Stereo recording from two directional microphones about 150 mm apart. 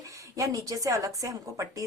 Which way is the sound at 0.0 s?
20° right (ahead or behind).